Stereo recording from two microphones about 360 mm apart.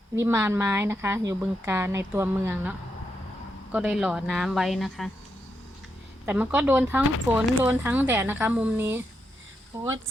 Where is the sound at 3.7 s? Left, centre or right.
Centre.